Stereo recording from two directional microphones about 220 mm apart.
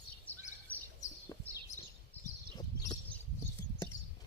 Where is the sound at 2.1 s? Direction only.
10° left (ahead or behind).